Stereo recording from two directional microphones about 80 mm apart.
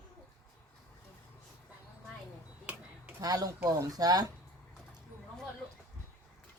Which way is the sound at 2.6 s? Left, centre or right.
Right.